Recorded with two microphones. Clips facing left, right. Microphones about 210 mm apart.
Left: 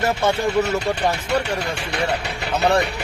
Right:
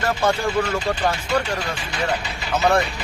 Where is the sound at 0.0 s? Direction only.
25° left (ahead or behind).